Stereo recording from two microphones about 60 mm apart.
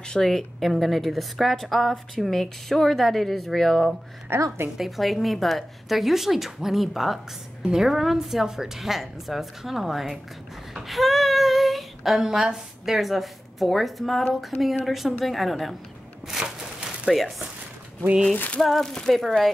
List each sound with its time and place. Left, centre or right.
0.0 s a woman's voice: centre
4.3 s a woman's voice: right
4.7 s a woman's voice: centre
16.3 s a sound: centre
18.3 s a sound: left
18.6 s a woman's voice: centre